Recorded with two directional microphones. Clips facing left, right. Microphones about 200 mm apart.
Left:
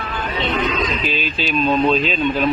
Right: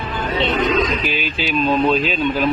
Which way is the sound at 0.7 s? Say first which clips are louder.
Right 3 dB; 15° right (ahead or behind).